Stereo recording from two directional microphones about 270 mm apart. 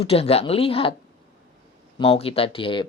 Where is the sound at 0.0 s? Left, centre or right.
Left.